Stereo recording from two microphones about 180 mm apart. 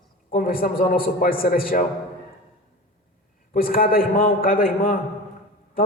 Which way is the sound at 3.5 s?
55° left (ahead or behind).